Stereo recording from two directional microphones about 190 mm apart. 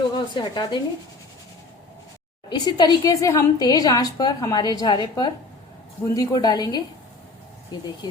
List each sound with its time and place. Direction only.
0.1 s a woman's voice: 25° left (ahead or behind)
2.5 s a woman's voice: 20° left (ahead or behind)